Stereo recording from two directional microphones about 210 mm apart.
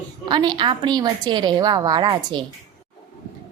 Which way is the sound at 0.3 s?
20° right (ahead or behind).